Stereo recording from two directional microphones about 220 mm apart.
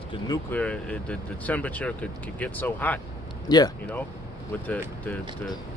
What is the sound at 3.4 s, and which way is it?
Speech, 20° left (ahead or behind).